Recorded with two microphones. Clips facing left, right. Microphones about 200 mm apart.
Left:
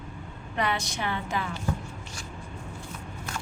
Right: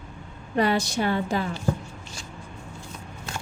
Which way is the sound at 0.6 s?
35° right (ahead or behind).